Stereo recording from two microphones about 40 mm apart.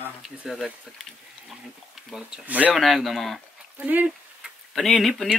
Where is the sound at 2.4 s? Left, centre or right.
Right.